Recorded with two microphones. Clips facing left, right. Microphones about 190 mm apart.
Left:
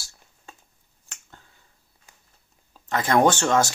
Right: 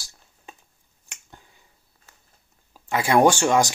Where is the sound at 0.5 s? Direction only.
15° right (ahead or behind).